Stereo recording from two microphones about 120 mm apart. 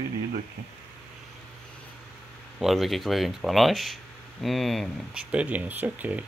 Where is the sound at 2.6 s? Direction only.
Centre (ahead or behind).